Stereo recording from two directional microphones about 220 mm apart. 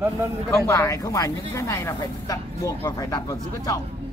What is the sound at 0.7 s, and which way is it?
Speech, 15° left (ahead or behind).